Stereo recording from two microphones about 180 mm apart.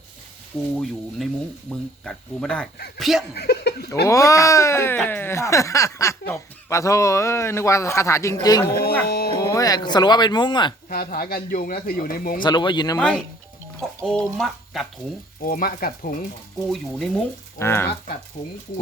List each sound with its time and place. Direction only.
0.5 s speech: centre (ahead or behind)
3.3 s speech: 65° left (ahead or behind)
4.0 s speech: 20° left (ahead or behind)
9.0 s speech: 60° left (ahead or behind)
9.4 s speech: 20° left (ahead or behind)
10.8 s speech: 55° left (ahead or behind)
12.4 s speech: 25° left (ahead or behind)
13.0 s speech: 5° left (ahead or behind)
15.4 s speech: 55° left (ahead or behind)
16.6 s speech: centre (ahead or behind)
17.6 s speech: 15° left (ahead or behind)